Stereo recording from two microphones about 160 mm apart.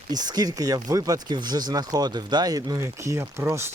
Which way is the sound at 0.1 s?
25° right (ahead or behind).